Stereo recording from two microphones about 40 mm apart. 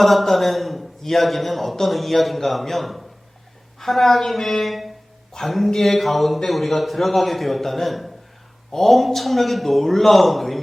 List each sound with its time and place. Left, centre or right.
0.0 s a man's voice: centre